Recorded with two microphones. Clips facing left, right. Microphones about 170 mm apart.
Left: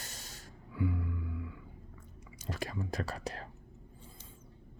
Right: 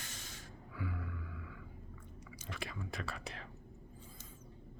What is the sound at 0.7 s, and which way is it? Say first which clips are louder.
Music: left 9 dB; 25° left (ahead or behind).